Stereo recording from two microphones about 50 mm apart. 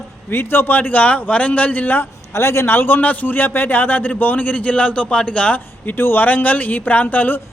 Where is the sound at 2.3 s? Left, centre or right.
Left.